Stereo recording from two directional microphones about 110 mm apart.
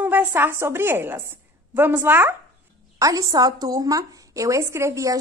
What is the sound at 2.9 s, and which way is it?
A woman's voice, 30° right (ahead or behind).